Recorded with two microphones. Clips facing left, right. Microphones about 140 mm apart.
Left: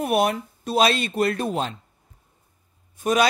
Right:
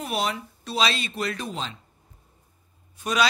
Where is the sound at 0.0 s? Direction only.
55° left (ahead or behind).